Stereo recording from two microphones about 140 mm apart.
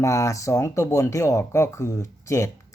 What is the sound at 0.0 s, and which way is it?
Speech, 20° left (ahead or behind).